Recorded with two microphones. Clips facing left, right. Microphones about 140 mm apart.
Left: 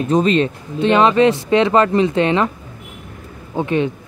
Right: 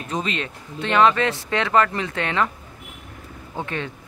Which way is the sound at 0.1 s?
35° left (ahead or behind).